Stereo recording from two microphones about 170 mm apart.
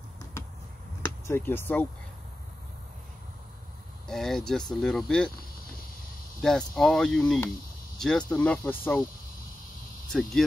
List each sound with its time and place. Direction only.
1.0 s speech: 15° left (ahead or behind)
4.1 s speech: centre (ahead or behind)
6.4 s speech: centre (ahead or behind)
10.0 s speech: centre (ahead or behind)